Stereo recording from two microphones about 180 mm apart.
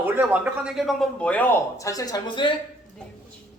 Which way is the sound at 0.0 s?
10° right (ahead or behind).